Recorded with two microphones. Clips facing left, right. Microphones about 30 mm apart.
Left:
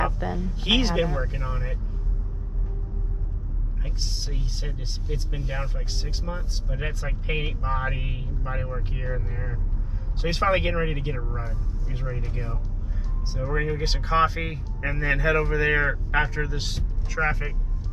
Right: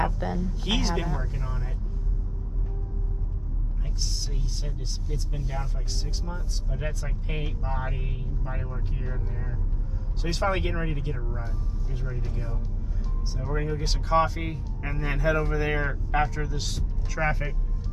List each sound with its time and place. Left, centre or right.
0.4 s speech: left
3.8 s speech: left
13.5 s speech: left
17.1 s speech: centre